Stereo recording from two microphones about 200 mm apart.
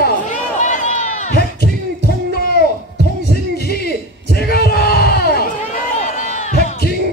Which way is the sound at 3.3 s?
50° left (ahead or behind).